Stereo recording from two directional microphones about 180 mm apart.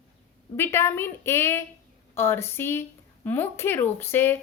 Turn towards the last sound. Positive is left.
turn(degrees=10)  # may be behind; listen again after turning